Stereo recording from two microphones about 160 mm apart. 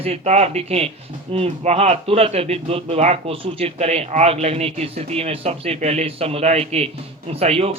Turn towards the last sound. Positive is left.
turn(degrees=-40)  # may be behind; listen again after turning